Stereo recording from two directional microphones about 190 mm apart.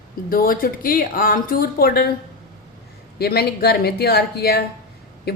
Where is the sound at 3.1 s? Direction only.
55° left (ahead or behind).